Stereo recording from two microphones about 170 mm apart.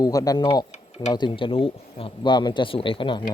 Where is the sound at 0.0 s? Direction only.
20° left (ahead or behind).